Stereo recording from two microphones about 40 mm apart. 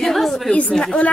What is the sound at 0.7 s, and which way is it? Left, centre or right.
Speech, left.